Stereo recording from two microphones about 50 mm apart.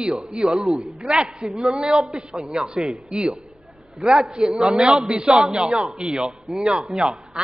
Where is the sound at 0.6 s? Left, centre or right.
Centre.